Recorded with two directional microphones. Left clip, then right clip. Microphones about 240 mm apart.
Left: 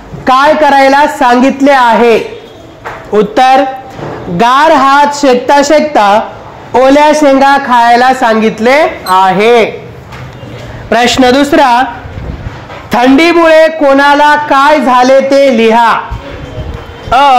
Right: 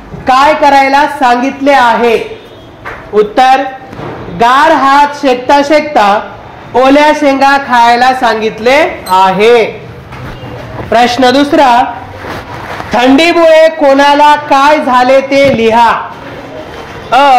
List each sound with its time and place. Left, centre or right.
0.2 s a woman's voice: left
3.2 s a woman's voice: left
10.9 s a woman's voice: left
12.9 s a woman's voice: left
15.6 s a woman's voice: left
17.1 s a woman's voice: left